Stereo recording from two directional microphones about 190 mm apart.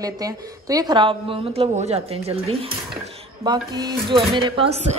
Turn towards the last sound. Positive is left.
turn(degrees=-30)  # may be behind; listen again after turning